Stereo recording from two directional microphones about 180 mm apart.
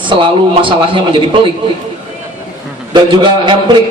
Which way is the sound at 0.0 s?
25° right (ahead or behind).